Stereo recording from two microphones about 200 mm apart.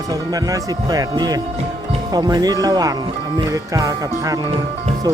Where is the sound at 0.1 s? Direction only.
15° right (ahead or behind).